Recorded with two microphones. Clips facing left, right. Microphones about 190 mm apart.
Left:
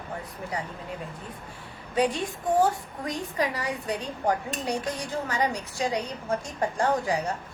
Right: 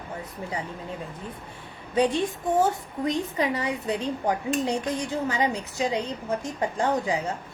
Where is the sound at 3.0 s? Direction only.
20° right (ahead or behind).